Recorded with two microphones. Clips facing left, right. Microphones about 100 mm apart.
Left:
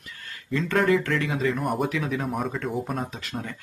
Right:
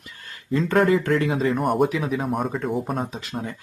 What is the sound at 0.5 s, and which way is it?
Speech, 40° right (ahead or behind).